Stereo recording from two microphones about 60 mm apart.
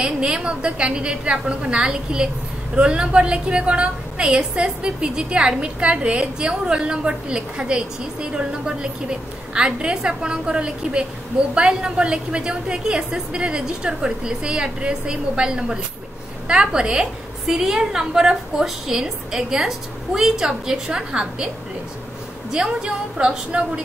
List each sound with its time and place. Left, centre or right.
0.0 s a woman's voice: centre
22.5 s a woman's voice: centre